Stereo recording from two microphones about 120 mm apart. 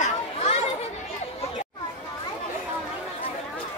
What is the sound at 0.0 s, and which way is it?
Children playing, 70° left (ahead or behind).